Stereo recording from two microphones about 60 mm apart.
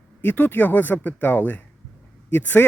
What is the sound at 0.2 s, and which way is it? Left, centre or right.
A man's voice, left.